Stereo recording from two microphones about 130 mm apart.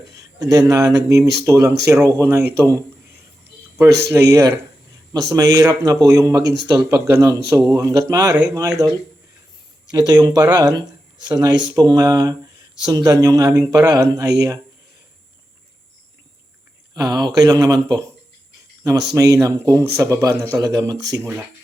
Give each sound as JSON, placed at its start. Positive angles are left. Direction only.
{"t": 0.1, "sound": "speech", "side_deg": -25}
{"t": 3.8, "sound": "speech", "side_deg": -25}
{"t": 9.9, "sound": "speech", "side_deg": -30}
{"t": 16.9, "sound": "speech", "side_deg": -30}